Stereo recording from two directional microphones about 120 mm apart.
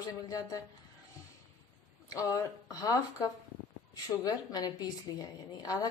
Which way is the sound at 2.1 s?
30° left (ahead or behind).